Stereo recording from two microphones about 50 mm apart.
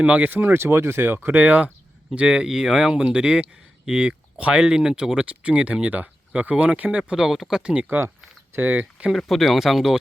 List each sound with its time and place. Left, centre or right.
0.0 s speech: right
0.3 s speech: right
0.5 s speech: right
2.1 s speech: centre
2.9 s speech: centre
5.2 s speech: right
7.1 s speech: centre
7.6 s speech: centre
8.6 s speech: right
9.0 s speech: centre